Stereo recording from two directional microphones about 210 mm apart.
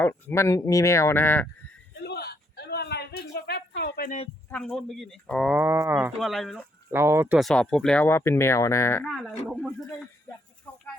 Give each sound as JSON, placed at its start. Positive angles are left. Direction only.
{"t": 0.0, "sound": "speech", "side_deg": 10}
{"t": 2.0, "sound": "a sound", "side_deg": 50}
{"t": 4.5, "sound": "speech", "side_deg": 5}
{"t": 6.9, "sound": "speech", "side_deg": -10}
{"t": 7.3, "sound": "speech", "side_deg": 0}
{"t": 9.0, "sound": "speech", "side_deg": -5}